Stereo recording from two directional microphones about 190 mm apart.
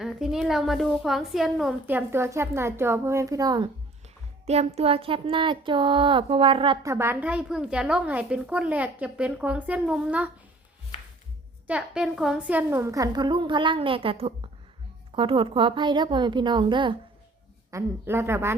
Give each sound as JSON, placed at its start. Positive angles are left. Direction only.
{"t": 0.0, "sound": "a woman's voice", "side_deg": 0}
{"t": 4.4, "sound": "a woman's voice", "side_deg": -35}
{"t": 6.9, "sound": "a woman's voice", "side_deg": -10}
{"t": 11.7, "sound": "a woman's voice", "side_deg": -5}
{"t": 17.7, "sound": "a woman's voice", "side_deg": -15}